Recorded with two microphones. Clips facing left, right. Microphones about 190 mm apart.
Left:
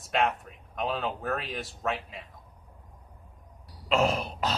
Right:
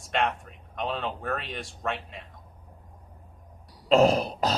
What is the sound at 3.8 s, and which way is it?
Cough, 35° right (ahead or behind).